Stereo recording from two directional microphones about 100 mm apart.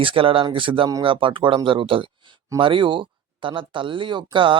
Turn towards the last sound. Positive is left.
turn(degrees=-55)  # may be behind; listen again after turning